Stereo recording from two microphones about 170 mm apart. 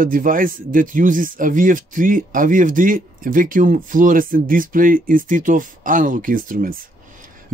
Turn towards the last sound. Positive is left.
turn(degrees=-55)  # may be behind; listen again after turning